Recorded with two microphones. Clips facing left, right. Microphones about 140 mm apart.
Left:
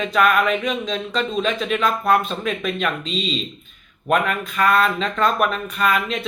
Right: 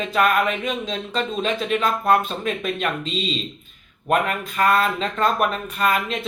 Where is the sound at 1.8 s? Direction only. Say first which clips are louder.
Even; 30° right (ahead or behind).